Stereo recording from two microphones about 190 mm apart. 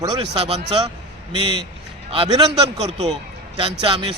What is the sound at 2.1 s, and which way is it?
A man's voice, 25° right (ahead or behind).